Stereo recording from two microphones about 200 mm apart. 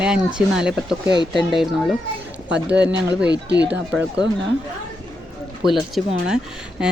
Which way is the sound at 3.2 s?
60° right (ahead or behind).